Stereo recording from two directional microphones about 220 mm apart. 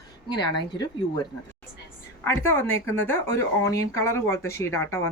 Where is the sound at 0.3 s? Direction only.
20° left (ahead or behind).